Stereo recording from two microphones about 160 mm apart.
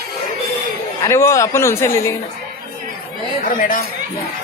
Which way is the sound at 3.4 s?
60° left (ahead or behind).